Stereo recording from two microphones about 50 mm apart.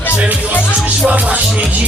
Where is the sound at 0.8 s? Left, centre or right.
Right.